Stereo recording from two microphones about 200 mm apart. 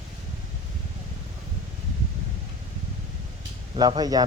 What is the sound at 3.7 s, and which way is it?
Speech, 20° right (ahead or behind).